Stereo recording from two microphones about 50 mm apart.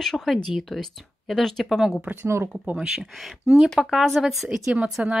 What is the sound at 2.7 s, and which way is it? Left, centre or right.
Speech, centre.